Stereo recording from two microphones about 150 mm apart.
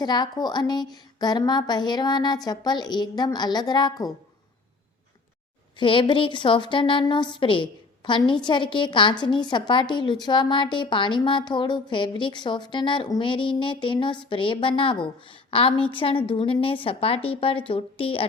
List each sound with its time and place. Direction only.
0.0 s a woman's voice: 30° left (ahead or behind)
5.8 s a woman's voice: 35° left (ahead or behind)